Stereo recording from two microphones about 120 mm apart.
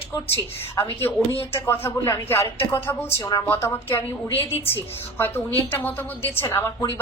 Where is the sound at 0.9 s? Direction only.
20° left (ahead or behind).